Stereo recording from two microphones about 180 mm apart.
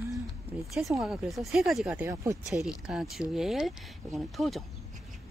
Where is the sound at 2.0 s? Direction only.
15° right (ahead or behind).